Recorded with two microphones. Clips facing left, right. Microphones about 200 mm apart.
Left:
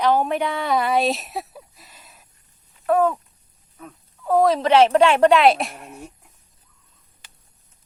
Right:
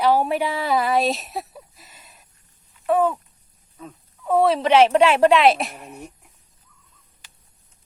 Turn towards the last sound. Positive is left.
turn(degrees=0)  # may be behind; listen again after turning